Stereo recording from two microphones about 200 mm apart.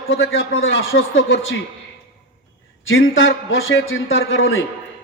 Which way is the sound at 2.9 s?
70° left (ahead or behind).